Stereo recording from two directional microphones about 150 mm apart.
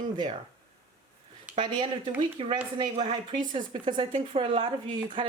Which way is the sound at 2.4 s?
40° right (ahead or behind).